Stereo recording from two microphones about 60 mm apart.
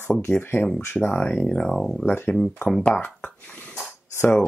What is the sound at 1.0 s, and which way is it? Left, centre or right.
Speech, left.